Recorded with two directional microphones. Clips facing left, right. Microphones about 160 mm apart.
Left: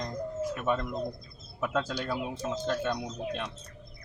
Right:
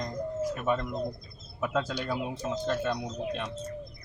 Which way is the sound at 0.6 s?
Centre (ahead or behind).